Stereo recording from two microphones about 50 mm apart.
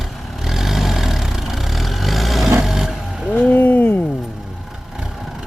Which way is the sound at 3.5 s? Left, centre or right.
Left.